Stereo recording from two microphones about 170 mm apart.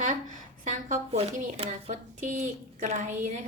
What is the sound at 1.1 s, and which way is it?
A woman's voice, 40° right (ahead or behind).